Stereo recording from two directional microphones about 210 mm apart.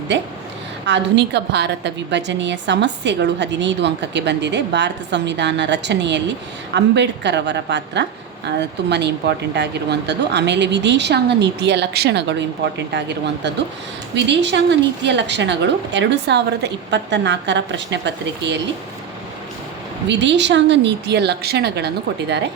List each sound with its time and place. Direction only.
0.9 s a woman's voice: 55° right (ahead or behind)
20.1 s a woman's voice: 55° right (ahead or behind)